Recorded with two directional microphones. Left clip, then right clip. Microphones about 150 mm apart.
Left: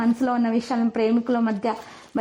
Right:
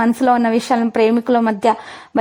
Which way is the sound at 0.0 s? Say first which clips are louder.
Right 9 dB; 40° right (ahead or behind).